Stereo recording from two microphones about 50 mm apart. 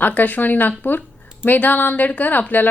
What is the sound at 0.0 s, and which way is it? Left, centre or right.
A woman's voice, left.